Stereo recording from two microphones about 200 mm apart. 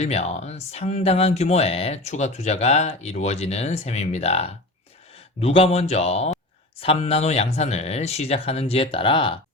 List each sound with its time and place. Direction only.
0.0 s speech: 30° left (ahead or behind)